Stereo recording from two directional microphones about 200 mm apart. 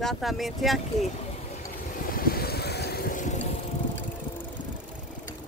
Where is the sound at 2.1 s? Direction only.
50° left (ahead or behind).